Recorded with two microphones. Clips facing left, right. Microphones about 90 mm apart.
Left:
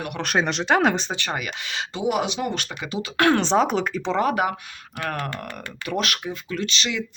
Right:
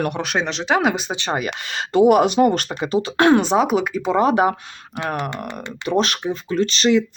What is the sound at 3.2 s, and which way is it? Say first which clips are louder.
Speech: right 4 dB; 20° right (ahead or behind).